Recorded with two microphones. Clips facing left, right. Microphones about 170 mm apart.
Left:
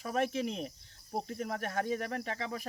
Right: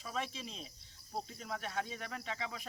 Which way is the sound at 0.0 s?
60° left (ahead or behind).